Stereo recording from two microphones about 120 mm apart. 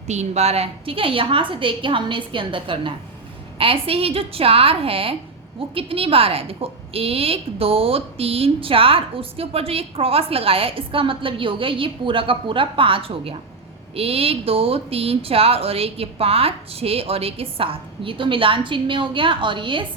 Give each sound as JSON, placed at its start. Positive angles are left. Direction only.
{"t": 0.1, "sound": "a woman's voice", "side_deg": -70}